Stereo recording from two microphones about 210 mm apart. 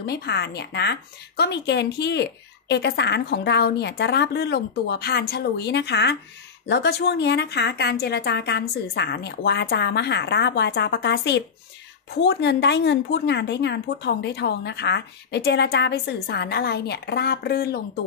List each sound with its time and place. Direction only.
0.0 s a woman's voice: 50° left (ahead or behind)